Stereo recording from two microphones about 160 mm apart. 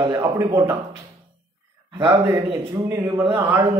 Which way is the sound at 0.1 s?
20° right (ahead or behind).